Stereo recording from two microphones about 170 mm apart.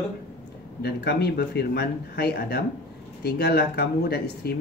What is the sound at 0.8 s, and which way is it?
Speech, 75° left (ahead or behind).